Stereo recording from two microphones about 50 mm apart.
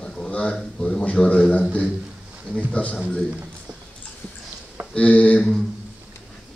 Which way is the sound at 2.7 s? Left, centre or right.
Left.